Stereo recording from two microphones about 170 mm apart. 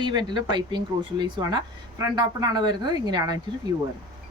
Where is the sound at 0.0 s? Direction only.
25° right (ahead or behind).